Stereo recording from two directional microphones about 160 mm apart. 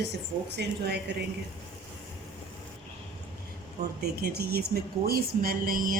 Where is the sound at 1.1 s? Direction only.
90° right.